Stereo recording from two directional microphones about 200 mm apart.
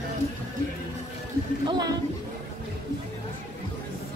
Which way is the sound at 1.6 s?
20° right (ahead or behind).